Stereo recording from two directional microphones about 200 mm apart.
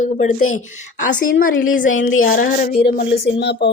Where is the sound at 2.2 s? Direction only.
45° left (ahead or behind).